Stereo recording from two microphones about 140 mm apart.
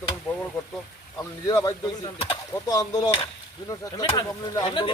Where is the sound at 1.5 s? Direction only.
25° left (ahead or behind).